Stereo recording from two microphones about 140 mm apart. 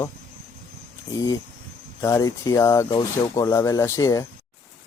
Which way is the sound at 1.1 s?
25° left (ahead or behind).